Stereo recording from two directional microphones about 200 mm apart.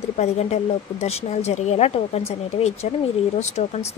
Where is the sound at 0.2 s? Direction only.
35° left (ahead or behind).